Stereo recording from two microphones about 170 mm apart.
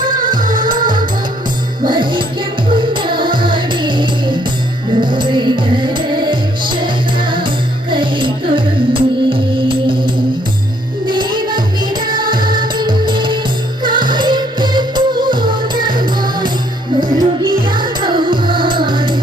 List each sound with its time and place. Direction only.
0.6 s music: 25° right (ahead or behind)
11.0 s music: 25° right (ahead or behind)